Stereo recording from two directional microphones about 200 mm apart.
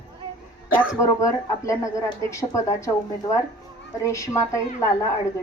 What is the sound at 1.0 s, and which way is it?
A woman's voice, 15° left (ahead or behind).